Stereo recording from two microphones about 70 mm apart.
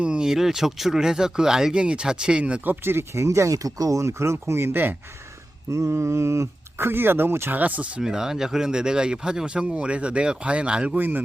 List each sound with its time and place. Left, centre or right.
0.0 s speech: centre
2.8 s speech: right
5.7 s speech: right; by 8.0 s centre
8.0 s speech: centre; by 11.2 s right